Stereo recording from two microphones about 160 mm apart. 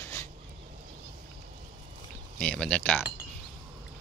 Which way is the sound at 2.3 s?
5° left (ahead or behind).